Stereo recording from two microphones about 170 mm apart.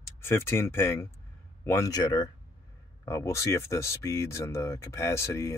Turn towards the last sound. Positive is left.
turn(degrees=15)  # may be behind; listen again after turning